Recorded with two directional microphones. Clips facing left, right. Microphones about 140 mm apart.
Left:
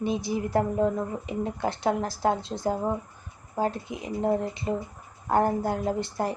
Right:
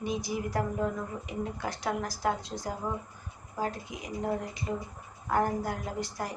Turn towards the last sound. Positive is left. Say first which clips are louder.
# left 7 dB
turn(degrees=25)  # may be behind; listen again after turning